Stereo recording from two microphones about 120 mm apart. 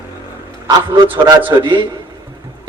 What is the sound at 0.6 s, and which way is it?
A man's voice, 40° right (ahead or behind).